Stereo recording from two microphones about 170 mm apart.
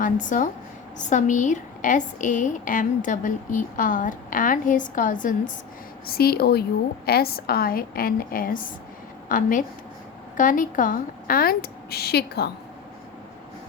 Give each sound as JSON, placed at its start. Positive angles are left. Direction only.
{"t": 0.0, "sound": "a woman's voice", "side_deg": 50}
{"t": 6.1, "sound": "a woman's voice", "side_deg": 65}